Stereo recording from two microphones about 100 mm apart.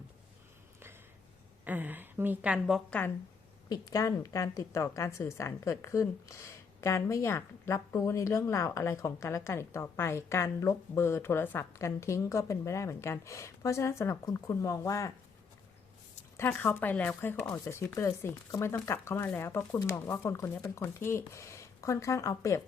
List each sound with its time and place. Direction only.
1.6 s a woman's voice: 20° right (ahead or behind)
2.9 s speech: 10° left (ahead or behind)
3.7 s a woman's voice: 40° left (ahead or behind)
16.4 s a woman's voice: 20° left (ahead or behind)